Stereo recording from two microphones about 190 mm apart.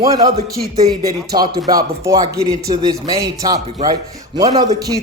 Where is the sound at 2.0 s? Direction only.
20° right (ahead or behind).